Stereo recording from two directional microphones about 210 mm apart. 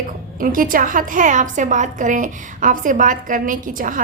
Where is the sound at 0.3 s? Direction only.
40° right (ahead or behind).